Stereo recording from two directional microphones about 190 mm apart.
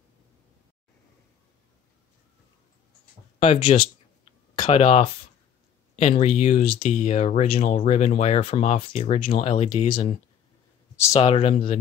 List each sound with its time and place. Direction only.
3.3 s a sound: 30° left (ahead or behind)
5.9 s speech: 35° left (ahead or behind)
11.1 s speech: 30° left (ahead or behind)